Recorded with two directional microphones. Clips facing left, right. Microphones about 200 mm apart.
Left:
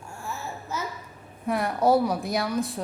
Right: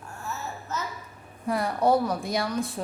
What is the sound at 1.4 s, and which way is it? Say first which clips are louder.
Speech: left 1 dB; centre (ahead or behind).